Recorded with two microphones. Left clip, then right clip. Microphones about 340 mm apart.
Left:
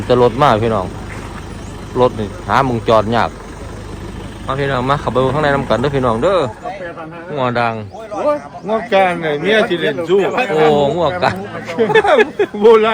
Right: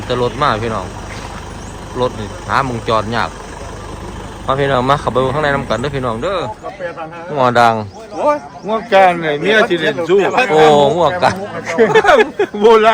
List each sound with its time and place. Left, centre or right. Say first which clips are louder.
0.1 s speech: left 4 dB; centre
2.0 s speech: left 4 dB; centre
4.4 s a man's voice: right 3 dB; centre
8.2 s speech: right 2 dB; right
10.8 s a man's voice: right 3 dB; centre
11.6 s speech: right 2 dB; right